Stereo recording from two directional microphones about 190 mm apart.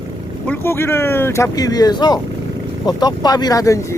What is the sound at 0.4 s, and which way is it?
Speech, 10° left (ahead or behind).